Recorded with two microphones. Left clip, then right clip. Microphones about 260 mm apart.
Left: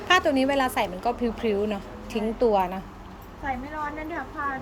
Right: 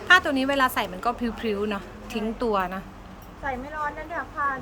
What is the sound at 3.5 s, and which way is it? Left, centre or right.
Speech, centre.